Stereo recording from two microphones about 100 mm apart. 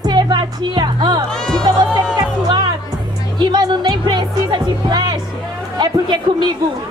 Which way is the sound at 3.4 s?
45° right (ahead or behind).